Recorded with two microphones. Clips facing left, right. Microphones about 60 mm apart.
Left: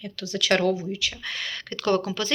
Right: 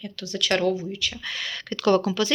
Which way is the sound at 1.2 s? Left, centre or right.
Left.